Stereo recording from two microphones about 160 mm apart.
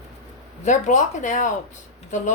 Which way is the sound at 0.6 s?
50° left (ahead or behind).